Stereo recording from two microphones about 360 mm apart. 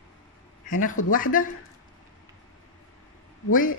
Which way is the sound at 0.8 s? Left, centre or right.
Left.